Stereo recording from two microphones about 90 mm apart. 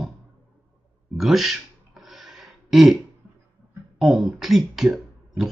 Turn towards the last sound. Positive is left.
turn(degrees=-5)  # may be behind; listen again after turning